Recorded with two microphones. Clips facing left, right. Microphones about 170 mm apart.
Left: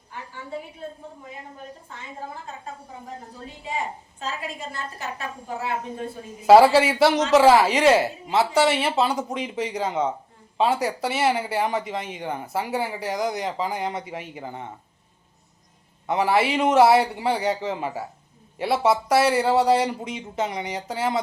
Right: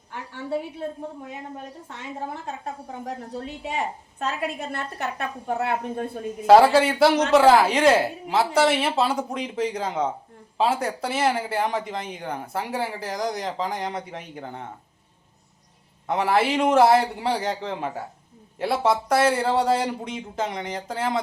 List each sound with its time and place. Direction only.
0.1 s a woman's voice: 75° right (ahead or behind)
6.5 s speech: 5° left (ahead or behind)
16.0 s speech: centre (ahead or behind)